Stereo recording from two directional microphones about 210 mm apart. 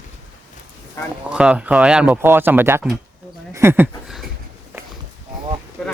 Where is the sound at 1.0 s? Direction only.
15° left (ahead or behind).